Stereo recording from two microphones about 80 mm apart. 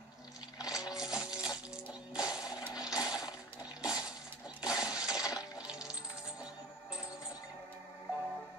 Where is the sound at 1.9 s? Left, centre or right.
Centre.